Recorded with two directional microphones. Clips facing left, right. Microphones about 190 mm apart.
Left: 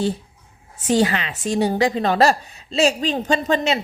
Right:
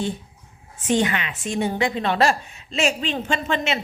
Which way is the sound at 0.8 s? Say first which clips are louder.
Left 3 dB; 35° left (ahead or behind).